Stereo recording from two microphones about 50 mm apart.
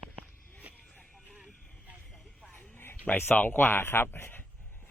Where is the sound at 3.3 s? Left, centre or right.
Left.